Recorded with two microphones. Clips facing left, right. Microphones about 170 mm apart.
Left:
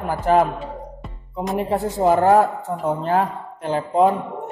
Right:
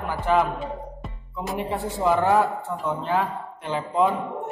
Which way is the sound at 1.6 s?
40° left (ahead or behind).